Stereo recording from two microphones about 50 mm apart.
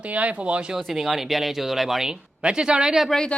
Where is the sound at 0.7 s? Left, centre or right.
Centre.